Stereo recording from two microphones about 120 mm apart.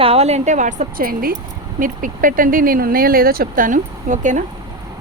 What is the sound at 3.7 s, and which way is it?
Speech, 90° right.